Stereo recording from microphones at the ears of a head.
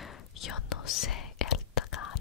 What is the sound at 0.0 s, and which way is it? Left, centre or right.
Whispering, left.